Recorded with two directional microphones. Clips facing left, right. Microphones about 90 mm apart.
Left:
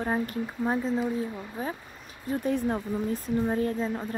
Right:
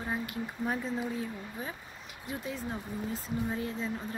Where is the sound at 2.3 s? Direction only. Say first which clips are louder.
Left 10 dB; 50° left (ahead or behind).